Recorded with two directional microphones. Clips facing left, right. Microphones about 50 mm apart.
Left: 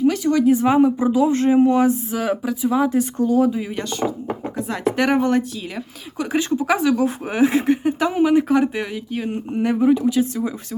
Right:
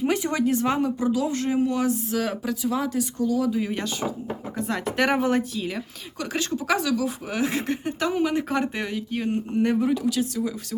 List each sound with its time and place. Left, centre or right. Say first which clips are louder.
0.1 s a sound: left 4 dB; right
0.4 s speech: left 8 dB; centre
2.1 s speech: left 4 dB; centre
3.0 s speech: left 6 dB; left
3.5 s speech: left 1 dB; centre
6.1 s speech: left 7 dB; centre
6.9 s speech: left 5 dB; left; by 9.3 s centre
9.7 s speech: left 6 dB; centre